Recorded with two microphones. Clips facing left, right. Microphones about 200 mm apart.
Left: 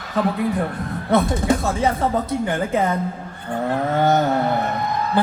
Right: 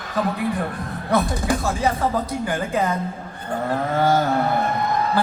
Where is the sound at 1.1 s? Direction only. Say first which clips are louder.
Left 3 dB; 25° left (ahead or behind).